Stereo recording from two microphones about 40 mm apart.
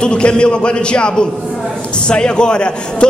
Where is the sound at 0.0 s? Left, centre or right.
Left.